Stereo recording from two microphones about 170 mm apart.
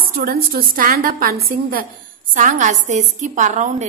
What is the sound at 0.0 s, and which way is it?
A woman's voice, 60° right (ahead or behind).